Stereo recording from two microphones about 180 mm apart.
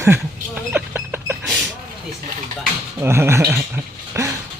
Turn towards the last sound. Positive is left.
turn(degrees=-15)  # may be behind; listen again after turning